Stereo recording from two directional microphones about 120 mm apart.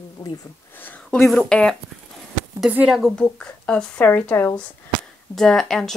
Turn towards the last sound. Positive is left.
turn(degrees=5)  # may be behind; listen again after turning